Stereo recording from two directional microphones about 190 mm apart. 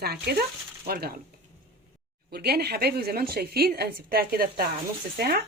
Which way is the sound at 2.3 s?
55° right (ahead or behind).